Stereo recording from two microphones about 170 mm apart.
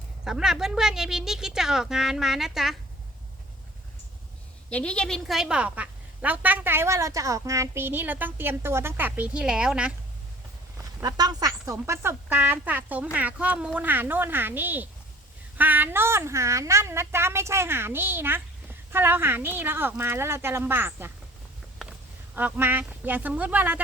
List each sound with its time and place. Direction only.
0.3 s a woman's voice: 5° right (ahead or behind)
4.7 s a woman's voice: 5° left (ahead or behind)
10.8 s a woman's voice: 25° right (ahead or behind)
22.4 s a woman's voice: 10° right (ahead or behind)